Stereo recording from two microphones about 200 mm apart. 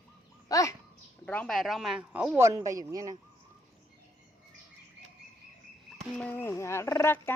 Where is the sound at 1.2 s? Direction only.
5° left (ahead or behind); by 3.2 s 15° right (ahead or behind).